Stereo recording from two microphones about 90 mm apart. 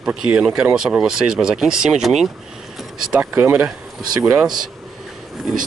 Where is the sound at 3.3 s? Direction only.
25° right (ahead or behind).